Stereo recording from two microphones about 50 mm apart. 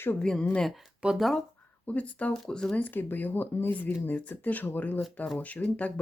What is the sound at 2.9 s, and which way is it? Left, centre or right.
Speech, left.